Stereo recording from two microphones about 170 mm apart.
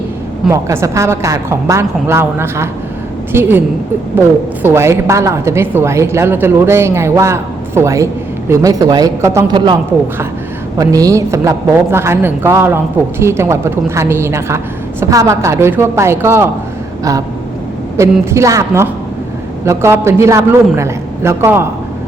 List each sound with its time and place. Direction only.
0.4 s a woman's voice: 15° right (ahead or behind)
4.6 s a woman's voice: 15° right (ahead or behind)
10.8 s a woman's voice: 20° right (ahead or behind)
17.0 s a sound: 20° right (ahead or behind)
17.9 s a woman's voice: 15° right (ahead or behind)